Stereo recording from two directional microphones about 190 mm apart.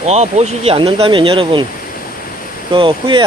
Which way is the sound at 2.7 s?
25° right (ahead or behind).